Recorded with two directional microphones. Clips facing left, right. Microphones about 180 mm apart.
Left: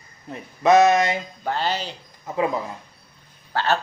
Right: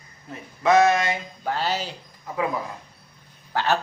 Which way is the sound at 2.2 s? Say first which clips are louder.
Left 3 dB; 25° left (ahead or behind).